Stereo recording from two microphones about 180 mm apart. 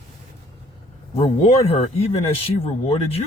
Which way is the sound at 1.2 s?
35° left (ahead or behind).